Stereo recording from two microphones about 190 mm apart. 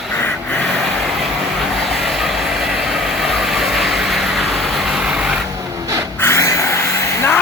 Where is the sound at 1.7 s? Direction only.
Centre (ahead or behind).